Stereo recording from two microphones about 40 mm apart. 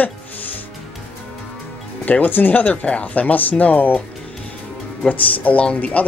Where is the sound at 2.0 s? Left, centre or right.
Left.